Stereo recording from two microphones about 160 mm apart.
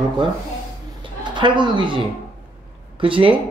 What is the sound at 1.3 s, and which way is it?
Speech, 30° right (ahead or behind).